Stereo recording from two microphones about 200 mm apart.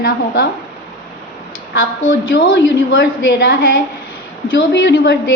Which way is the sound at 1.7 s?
75° left (ahead or behind).